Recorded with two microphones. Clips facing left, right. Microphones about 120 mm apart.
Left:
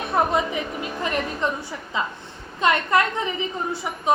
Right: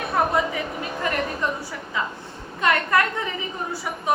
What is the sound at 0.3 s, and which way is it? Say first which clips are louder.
A woman's voice: even; 20° left (ahead or behind).